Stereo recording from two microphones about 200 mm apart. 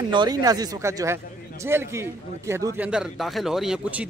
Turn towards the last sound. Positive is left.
turn(degrees=-5)  # may be behind; listen again after turning